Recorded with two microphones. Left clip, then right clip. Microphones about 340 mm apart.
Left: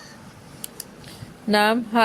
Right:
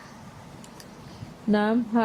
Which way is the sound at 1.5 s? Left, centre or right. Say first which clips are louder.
Left 5 dB; left.